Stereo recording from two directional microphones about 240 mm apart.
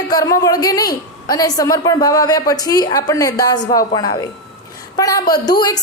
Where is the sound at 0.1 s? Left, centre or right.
Centre.